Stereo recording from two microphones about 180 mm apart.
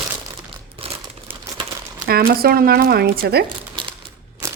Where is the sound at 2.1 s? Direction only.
60° right (ahead or behind).